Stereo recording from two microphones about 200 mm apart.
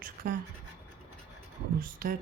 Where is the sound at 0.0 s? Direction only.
45° right (ahead or behind).